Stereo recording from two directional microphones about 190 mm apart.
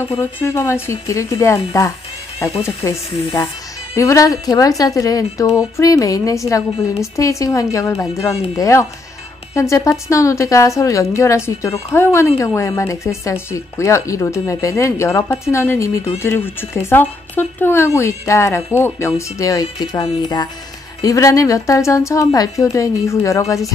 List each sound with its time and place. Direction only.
0.2 s a woman's voice: 15° left (ahead or behind)
3.9 s a woman's voice: 15° left (ahead or behind)